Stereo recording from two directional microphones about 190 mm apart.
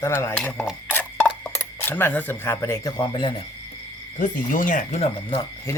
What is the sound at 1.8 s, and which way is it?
Cutlery, 10° left (ahead or behind).